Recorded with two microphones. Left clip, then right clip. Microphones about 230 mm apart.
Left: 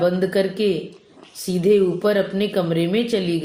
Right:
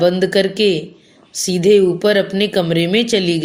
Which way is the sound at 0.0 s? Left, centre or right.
Right.